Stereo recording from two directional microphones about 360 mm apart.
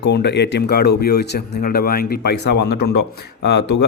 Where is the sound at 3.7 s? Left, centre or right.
Left.